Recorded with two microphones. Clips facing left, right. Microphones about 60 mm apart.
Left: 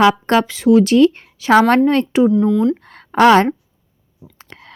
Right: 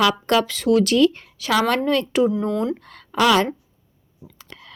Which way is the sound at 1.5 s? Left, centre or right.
Left.